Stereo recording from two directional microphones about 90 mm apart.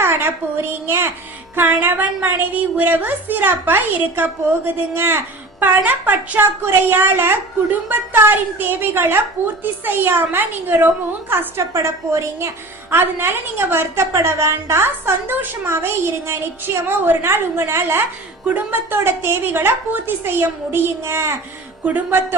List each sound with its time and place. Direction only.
0.0 s a woman's voice: 25° right (ahead or behind)